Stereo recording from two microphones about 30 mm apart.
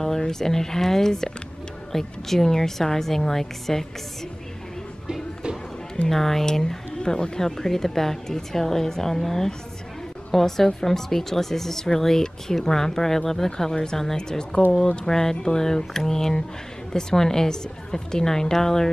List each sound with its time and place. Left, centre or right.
0.3 s speech: centre
6.0 s speech: centre; by 7.3 s left
7.3 s speech: centre
14.1 s a woman's voice: left